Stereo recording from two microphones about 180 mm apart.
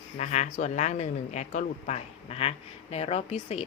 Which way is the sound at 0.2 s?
40° left (ahead or behind).